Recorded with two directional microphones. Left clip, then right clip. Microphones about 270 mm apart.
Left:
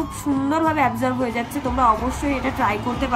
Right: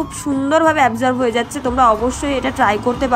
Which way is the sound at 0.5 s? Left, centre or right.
Centre.